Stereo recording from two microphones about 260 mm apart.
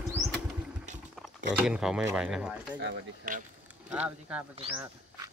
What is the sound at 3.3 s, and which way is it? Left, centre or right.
Speech, right.